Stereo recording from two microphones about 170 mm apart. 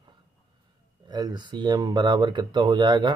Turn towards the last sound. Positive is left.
turn(degrees=-25)  # may be behind; listen again after turning